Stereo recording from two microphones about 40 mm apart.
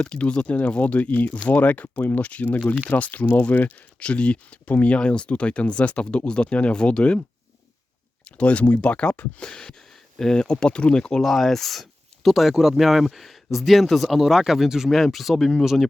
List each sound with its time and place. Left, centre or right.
0.0 s speech: left
0.8 s speech: left
4.0 s speech: left
4.9 s speech: left
8.4 s speech: left
11.2 s speech: centre